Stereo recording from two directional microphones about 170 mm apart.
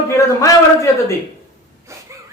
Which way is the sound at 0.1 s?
20° left (ahead or behind).